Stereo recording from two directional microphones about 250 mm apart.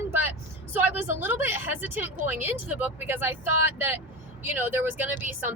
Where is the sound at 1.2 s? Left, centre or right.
Centre.